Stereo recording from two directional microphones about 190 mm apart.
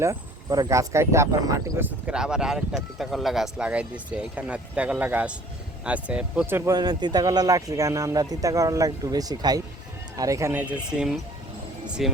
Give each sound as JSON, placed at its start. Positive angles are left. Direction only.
{"t": 0.0, "sound": "speech", "side_deg": -15}